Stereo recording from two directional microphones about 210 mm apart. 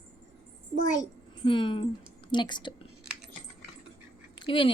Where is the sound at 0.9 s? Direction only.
20° left (ahead or behind).